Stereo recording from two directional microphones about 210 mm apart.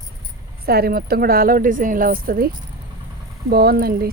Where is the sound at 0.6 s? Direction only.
45° right (ahead or behind).